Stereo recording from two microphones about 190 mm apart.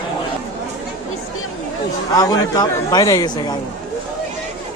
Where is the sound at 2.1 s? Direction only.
20° left (ahead or behind).